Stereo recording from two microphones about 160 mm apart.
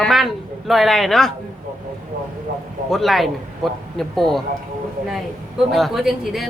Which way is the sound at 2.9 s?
Centre (ahead or behind).